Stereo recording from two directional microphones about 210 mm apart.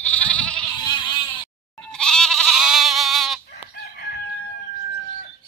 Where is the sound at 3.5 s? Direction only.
50° left (ahead or behind).